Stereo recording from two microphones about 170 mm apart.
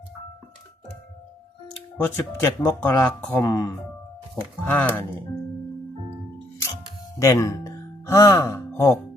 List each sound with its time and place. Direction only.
2.0 s speech: 15° left (ahead or behind)
7.2 s speech: 20° left (ahead or behind)